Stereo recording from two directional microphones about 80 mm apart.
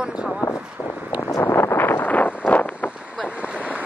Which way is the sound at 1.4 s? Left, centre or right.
Left.